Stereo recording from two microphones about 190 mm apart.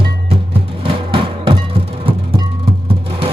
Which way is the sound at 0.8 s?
30° right (ahead or behind).